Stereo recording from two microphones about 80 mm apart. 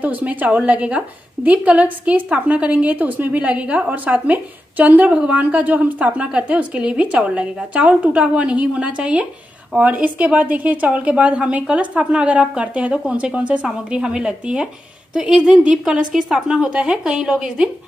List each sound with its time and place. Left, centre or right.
0.0 s a woman's voice: centre